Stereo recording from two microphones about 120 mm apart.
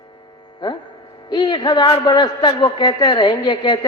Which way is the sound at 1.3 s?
35° left (ahead or behind).